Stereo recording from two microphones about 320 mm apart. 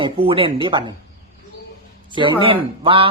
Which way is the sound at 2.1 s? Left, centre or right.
Centre.